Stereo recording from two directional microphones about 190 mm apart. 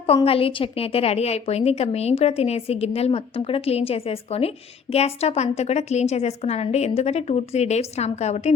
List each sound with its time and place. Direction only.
0.0 s a woman's voice: 30° left (ahead or behind)